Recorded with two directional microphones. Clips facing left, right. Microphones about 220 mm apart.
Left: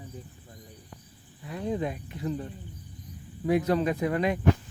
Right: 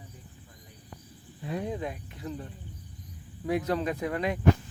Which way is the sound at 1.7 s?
Centre (ahead or behind).